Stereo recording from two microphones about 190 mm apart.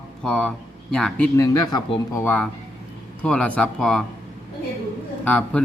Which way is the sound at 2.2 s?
10° left (ahead or behind).